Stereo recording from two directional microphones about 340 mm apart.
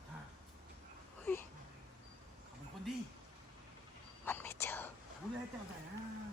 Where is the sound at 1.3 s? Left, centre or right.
Centre.